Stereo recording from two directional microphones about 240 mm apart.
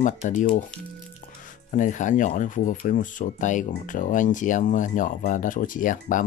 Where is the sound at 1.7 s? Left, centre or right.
Left.